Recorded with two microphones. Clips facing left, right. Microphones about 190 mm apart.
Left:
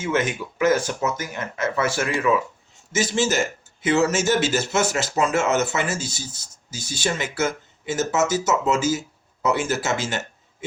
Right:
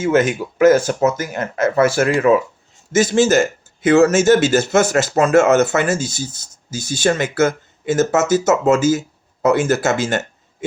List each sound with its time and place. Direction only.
0.0 s speech: 40° right (ahead or behind)